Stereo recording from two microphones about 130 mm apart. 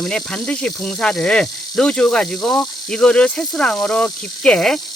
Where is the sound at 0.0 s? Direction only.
Centre (ahead or behind).